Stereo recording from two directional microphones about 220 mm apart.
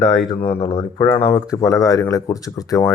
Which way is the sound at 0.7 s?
20° left (ahead or behind).